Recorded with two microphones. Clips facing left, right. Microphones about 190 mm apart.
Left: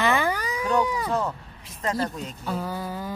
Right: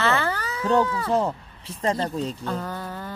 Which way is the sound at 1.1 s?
30° right (ahead or behind).